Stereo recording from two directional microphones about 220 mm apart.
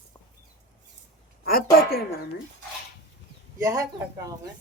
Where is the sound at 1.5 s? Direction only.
45° left (ahead or behind).